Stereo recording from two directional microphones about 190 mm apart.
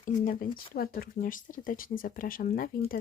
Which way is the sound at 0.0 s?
40° left (ahead or behind).